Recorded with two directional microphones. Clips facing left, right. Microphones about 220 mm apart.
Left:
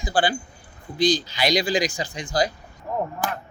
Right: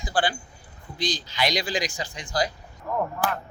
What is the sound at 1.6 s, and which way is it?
Speech, 15° left (ahead or behind).